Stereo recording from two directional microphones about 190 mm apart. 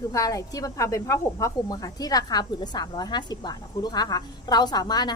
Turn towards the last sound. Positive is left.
turn(degrees=20)  # may be behind; listen again after turning